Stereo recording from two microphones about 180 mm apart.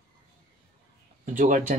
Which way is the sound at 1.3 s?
45° right (ahead or behind).